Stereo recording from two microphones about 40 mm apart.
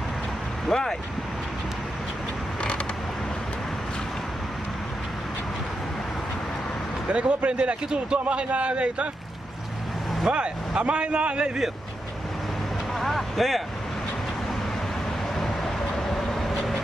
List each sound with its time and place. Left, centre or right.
0.7 s speech: centre
7.1 s a man's voice: right
10.3 s a man's voice: right
13.0 s speech: centre
15.3 s vehicle: centre